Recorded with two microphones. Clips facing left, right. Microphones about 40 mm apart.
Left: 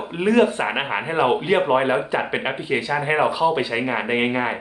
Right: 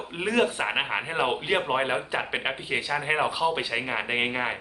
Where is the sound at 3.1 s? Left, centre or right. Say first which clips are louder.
Left 6 dB; centre.